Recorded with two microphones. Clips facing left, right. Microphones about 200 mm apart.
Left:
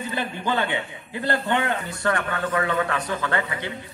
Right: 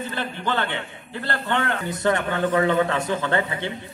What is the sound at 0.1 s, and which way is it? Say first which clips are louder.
A man's voice: left 3 dB; 15° left (ahead or behind).